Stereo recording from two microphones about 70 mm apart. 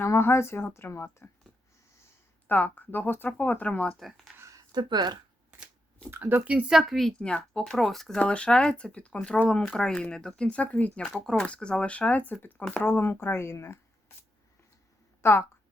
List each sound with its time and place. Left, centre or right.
0.0 s speech: left
2.5 s speech: left
4.4 s a sound: right
4.7 s speech: right
6.1 s speech: right
6.7 s speech: centre
7.2 s speech: centre
8.2 s speech: centre; by 13.7 s left
15.2 s speech: left